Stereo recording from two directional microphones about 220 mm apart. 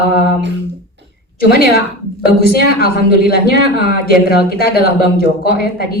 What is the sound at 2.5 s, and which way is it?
Speech, 45° left (ahead or behind).